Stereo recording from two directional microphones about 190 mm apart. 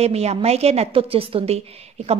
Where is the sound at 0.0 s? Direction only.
35° right (ahead or behind).